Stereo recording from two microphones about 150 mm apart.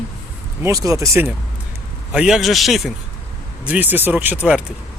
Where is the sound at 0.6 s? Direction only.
20° right (ahead or behind).